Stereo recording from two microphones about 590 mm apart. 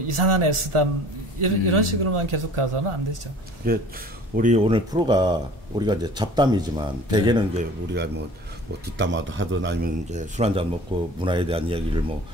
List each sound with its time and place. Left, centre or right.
0.1 s a man's voice: right
3.6 s speech: centre